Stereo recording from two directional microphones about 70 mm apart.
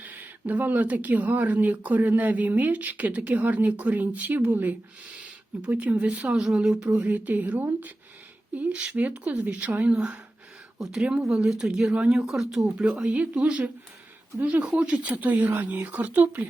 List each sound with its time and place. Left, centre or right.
0.0 s speech: right
10.8 s speech: centre
13.0 s speech: centre
14.6 s speech: centre